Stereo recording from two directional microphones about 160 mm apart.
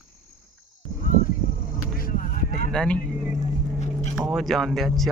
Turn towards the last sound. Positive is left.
turn(degrees=0)  # may be behind; listen again after turning